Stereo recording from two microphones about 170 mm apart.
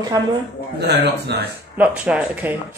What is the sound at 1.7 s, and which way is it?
Speech, 10° right (ahead or behind).